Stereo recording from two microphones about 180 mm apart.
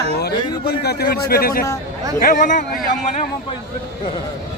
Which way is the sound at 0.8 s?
60° left (ahead or behind).